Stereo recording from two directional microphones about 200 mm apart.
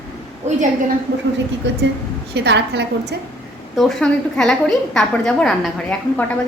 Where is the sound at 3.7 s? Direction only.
Centre (ahead or behind).